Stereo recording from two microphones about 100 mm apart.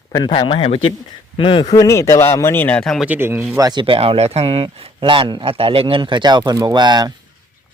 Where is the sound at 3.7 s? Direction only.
55° right (ahead or behind).